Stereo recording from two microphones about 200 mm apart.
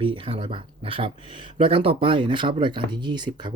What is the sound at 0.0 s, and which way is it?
Speech, 25° right (ahead or behind).